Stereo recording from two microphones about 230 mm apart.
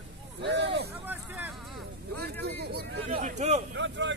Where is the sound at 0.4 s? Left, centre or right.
Right.